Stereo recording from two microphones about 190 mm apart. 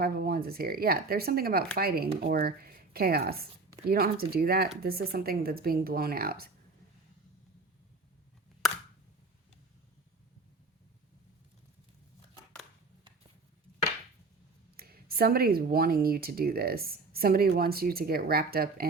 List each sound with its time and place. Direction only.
0.0 s speech: 55° right (ahead or behind)
14.8 s speech: 55° right (ahead or behind)